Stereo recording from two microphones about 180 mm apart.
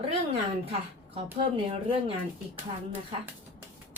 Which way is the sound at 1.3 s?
30° right (ahead or behind).